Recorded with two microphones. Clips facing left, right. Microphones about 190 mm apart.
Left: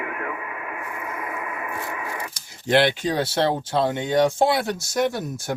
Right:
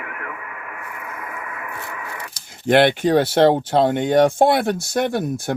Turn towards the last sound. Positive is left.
turn(degrees=-60)  # may be behind; listen again after turning